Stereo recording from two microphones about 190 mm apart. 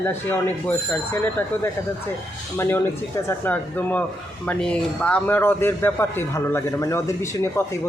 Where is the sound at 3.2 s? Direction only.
10° left (ahead or behind).